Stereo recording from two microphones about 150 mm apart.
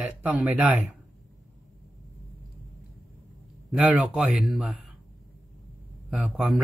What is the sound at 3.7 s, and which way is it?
A man's voice, 5° right (ahead or behind).